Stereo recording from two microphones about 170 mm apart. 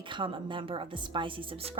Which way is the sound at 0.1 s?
30° right (ahead or behind).